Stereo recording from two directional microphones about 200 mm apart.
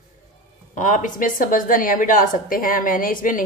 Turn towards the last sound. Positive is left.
turn(degrees=40)  # may be behind; listen again after turning